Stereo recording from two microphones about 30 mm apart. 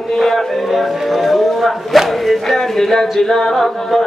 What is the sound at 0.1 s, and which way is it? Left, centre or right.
Music, centre.